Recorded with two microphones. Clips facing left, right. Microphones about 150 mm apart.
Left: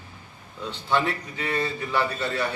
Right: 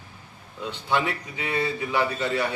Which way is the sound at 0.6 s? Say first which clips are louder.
Left 1 dB; 15° right (ahead or behind).